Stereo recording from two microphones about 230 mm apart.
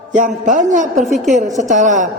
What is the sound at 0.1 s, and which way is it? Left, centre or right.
A man's voice, right.